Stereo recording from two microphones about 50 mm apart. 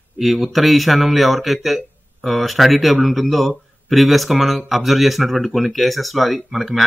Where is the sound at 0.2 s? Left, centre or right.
Centre.